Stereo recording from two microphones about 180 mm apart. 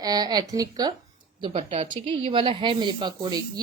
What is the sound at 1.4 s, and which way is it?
A woman's voice, 30° right (ahead or behind).